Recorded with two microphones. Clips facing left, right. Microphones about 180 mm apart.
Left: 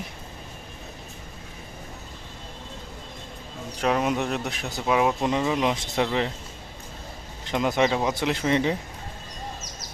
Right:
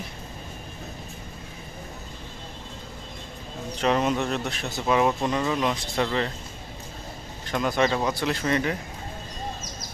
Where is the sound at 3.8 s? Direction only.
5° left (ahead or behind).